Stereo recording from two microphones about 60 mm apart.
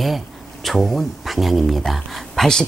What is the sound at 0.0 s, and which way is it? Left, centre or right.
Speech, centre.